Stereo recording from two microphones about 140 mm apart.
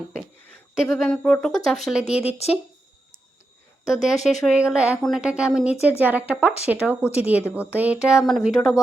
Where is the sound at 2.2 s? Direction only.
45° left (ahead or behind).